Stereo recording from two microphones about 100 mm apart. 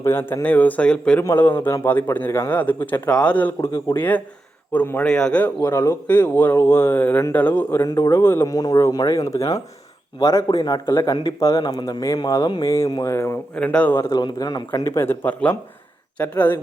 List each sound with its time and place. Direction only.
0.0 s a man's voice: 25° left (ahead or behind)
1.6 s a man's voice: 30° left (ahead or behind); by 5.5 s 10° left (ahead or behind)
5.6 s speech: 30° left (ahead or behind)
8.5 s speech: 35° left (ahead or behind)
11.6 s speech: 45° left (ahead or behind)
12.6 s speech: 30° left (ahead or behind)
13.6 s a man's voice: 15° left (ahead or behind)
14.1 s speech: 40° left (ahead or behind)
14.8 s a man's voice: 25° left (ahead or behind)